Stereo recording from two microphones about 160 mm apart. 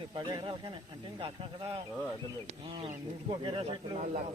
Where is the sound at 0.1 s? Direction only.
30° right (ahead or behind).